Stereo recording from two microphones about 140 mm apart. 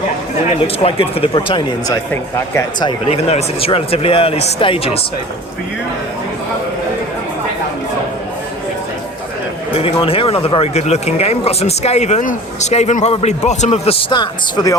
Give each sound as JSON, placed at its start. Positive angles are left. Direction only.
{"t": 0.8, "sound": "speech", "side_deg": 45}
{"t": 2.8, "sound": "speech", "side_deg": 45}
{"t": 9.7, "sound": "speech", "side_deg": 40}
{"t": 14.1, "sound": "speech", "side_deg": 35}